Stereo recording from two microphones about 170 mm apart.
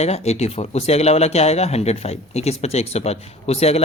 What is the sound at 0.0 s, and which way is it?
Speech, 40° left (ahead or behind).